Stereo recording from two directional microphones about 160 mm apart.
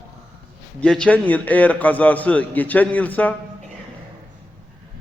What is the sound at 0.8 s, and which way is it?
A man's voice, 5° left (ahead or behind).